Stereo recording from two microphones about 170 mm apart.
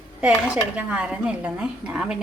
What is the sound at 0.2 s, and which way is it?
A woman's voice, 5° right (ahead or behind).